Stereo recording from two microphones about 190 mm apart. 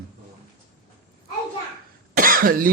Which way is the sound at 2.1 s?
50° right (ahead or behind).